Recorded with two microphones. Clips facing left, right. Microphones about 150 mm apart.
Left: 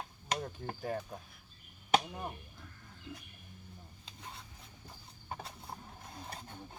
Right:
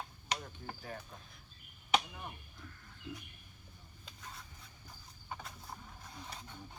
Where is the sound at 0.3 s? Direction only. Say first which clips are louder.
Left 5 dB; 45° left (ahead or behind).